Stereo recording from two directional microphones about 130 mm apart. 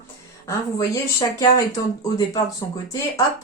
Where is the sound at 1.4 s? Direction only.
30° left (ahead or behind).